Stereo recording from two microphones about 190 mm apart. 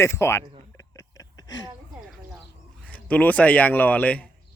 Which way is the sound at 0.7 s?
15° left (ahead or behind).